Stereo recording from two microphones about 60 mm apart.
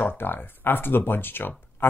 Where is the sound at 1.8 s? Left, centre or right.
Left.